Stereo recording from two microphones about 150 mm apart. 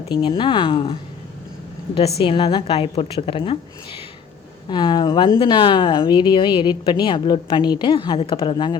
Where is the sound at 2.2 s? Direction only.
35° left (ahead or behind).